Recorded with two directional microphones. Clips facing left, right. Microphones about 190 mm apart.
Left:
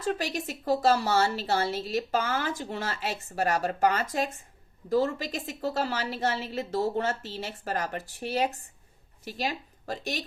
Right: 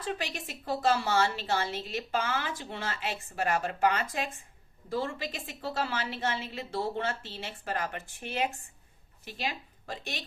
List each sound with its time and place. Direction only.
0.0 s a woman's voice: 40° left (ahead or behind)